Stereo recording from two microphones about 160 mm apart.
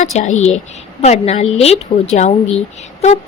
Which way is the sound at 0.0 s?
45° left (ahead or behind).